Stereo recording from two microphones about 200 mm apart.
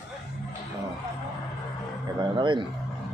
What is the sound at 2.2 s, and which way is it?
Speech, 25° right (ahead or behind).